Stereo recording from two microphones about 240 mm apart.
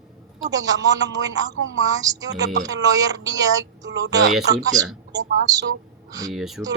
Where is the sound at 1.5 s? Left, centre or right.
Right.